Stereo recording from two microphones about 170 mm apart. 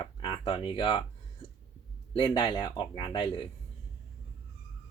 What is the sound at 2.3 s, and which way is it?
Speech, 30° left (ahead or behind).